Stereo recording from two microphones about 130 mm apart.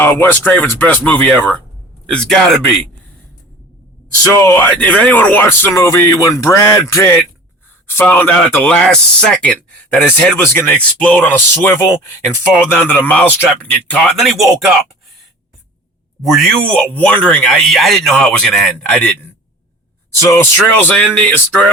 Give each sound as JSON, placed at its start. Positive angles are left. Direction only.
{"t": 0.0, "sound": "speech", "side_deg": 15}
{"t": 4.4, "sound": "speech", "side_deg": 20}
{"t": 7.9, "sound": "speech", "side_deg": 15}
{"t": 14.2, "sound": "speech", "side_deg": 0}
{"t": 16.2, "sound": "speech", "side_deg": 0}
{"t": 20.3, "sound": "speech", "side_deg": 15}